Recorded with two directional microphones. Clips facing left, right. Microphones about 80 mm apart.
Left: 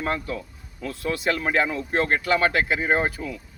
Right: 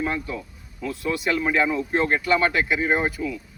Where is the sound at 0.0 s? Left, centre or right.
Left.